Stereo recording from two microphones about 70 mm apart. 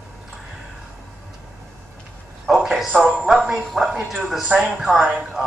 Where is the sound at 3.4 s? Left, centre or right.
Centre.